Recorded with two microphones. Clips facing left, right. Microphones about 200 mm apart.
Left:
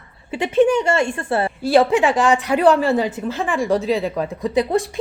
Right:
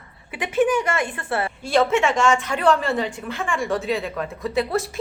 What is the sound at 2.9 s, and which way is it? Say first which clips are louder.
Speech: left 5 dB; 20° left (ahead or behind).